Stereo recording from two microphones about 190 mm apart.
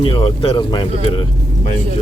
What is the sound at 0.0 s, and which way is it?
Speech, 30° left (ahead or behind).